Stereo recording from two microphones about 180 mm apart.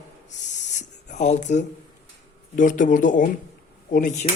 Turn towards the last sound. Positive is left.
turn(degrees=45)  # may be behind; listen again after turning